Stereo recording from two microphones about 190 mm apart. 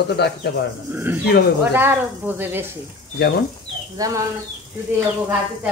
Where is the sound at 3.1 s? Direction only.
55° left (ahead or behind).